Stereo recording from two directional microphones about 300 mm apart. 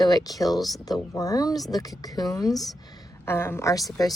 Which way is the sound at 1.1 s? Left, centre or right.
Centre.